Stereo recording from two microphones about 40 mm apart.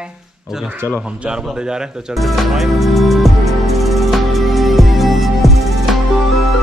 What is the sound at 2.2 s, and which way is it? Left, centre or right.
Music, centre.